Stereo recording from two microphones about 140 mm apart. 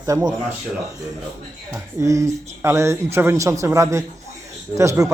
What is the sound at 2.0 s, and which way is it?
Speech, 20° right (ahead or behind).